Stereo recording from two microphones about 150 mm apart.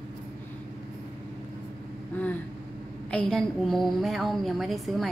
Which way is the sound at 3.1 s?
5° left (ahead or behind).